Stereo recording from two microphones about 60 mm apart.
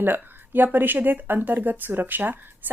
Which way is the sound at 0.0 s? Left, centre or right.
Right.